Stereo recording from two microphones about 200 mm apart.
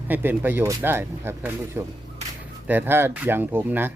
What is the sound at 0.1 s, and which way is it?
Speech, 10° right (ahead or behind).